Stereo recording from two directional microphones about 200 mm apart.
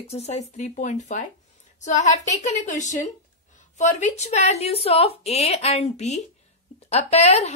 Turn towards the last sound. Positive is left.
turn(degrees=30)  # may be behind; listen again after turning